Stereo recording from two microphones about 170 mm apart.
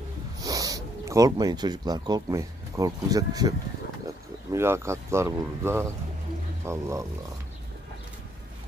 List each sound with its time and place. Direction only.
0.4 s speech: 20° right (ahead or behind)